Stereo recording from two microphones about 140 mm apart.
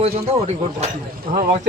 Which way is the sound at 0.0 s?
50° right (ahead or behind).